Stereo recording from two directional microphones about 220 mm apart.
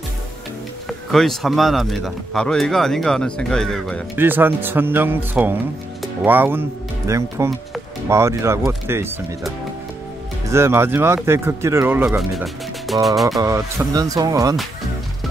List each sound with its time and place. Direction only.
0.8 s speech: centre (ahead or behind)
4.2 s speech: 10° right (ahead or behind)
10.5 s speech: 10° right (ahead or behind)
13.9 s speech: 15° right (ahead or behind)